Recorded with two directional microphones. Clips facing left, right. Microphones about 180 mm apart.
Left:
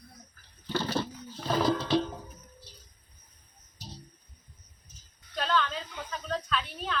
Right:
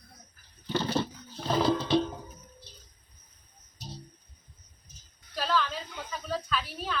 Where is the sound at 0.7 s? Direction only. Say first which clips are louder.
Right 2 dB; 15° right (ahead or behind).